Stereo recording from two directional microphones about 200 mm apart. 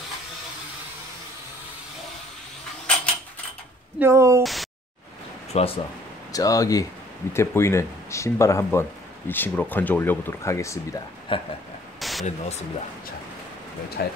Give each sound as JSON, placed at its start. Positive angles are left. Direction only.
{"t": 4.0, "sound": "speech", "side_deg": -15}
{"t": 4.4, "sound": "speech", "side_deg": 0}
{"t": 5.5, "sound": "speech", "side_deg": 30}
{"t": 6.3, "sound": "speech", "side_deg": 15}
{"t": 11.3, "sound": "speech", "side_deg": 25}
{"t": 12.0, "sound": "a sound", "side_deg": 0}
{"t": 12.3, "sound": "speech", "side_deg": 35}
{"t": 14.0, "sound": "speech", "side_deg": 55}